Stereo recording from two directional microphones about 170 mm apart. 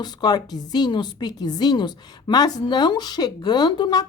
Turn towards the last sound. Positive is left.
turn(degrees=25)  # may be behind; listen again after turning